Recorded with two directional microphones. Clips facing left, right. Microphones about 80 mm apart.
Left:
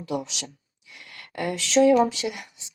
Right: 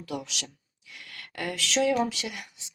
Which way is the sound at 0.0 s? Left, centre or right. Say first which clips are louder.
Left 5 dB; left.